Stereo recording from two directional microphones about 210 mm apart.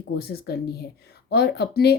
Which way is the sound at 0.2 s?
45° left (ahead or behind).